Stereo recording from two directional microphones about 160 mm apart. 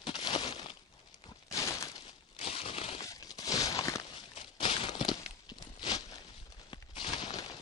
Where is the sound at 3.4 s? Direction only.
20° left (ahead or behind).